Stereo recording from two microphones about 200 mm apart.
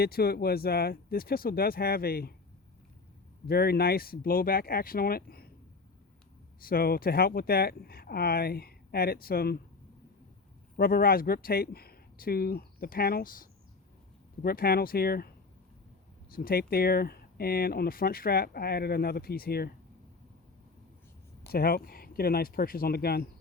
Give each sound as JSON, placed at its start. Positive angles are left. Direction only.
{"t": 0.0, "sound": "speech", "side_deg": 50}
{"t": 3.4, "sound": "speech", "side_deg": 50}
{"t": 6.6, "sound": "speech", "side_deg": 45}
{"t": 10.8, "sound": "speech", "side_deg": 50}
{"t": 16.3, "sound": "speech", "side_deg": 45}
{"t": 21.5, "sound": "speech", "side_deg": 50}